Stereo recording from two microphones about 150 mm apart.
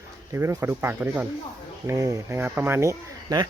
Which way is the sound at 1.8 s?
20° right (ahead or behind).